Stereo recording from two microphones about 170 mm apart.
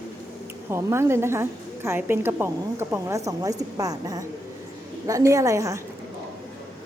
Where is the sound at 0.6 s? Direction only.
15° right (ahead or behind).